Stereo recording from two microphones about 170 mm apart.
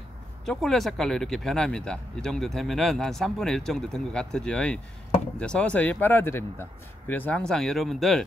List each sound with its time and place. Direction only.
0.5 s speech: centre (ahead or behind)